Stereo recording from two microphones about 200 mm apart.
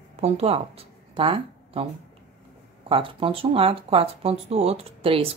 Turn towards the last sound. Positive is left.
turn(degrees=-30)  # may be behind; listen again after turning